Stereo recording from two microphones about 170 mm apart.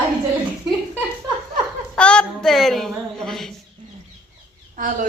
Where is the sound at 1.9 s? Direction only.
5° left (ahead or behind).